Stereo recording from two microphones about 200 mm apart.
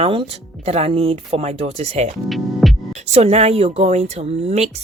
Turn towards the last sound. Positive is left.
turn(degrees=-30)  # may be behind; listen again after turning